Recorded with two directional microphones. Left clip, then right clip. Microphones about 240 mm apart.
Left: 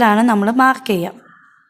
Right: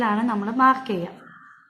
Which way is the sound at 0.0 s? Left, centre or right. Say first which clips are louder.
Left 10 dB; left.